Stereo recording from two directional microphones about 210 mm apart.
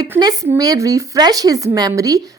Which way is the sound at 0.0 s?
20° right (ahead or behind).